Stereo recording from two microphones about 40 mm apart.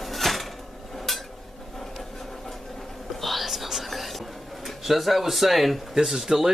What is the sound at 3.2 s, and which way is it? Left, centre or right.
Whispering, centre.